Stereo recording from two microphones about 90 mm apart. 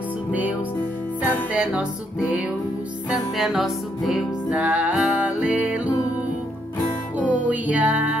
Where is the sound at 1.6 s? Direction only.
10° right (ahead or behind).